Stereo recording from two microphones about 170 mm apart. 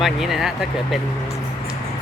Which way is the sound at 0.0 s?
Centre (ahead or behind).